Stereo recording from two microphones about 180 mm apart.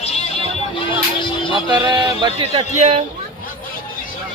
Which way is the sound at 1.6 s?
20° right (ahead or behind).